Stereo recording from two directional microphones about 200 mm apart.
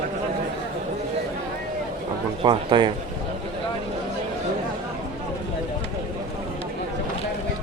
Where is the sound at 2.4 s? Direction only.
25° right (ahead or behind).